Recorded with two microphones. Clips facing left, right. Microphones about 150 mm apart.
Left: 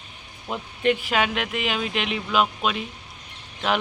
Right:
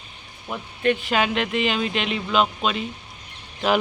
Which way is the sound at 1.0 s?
Centre (ahead or behind).